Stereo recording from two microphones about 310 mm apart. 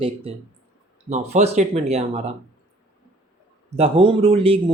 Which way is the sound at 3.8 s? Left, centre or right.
Centre.